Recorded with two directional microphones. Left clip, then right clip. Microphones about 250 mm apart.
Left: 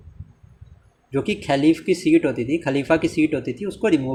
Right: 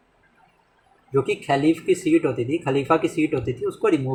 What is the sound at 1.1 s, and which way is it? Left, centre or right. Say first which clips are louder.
Speech: right 1 dB; left.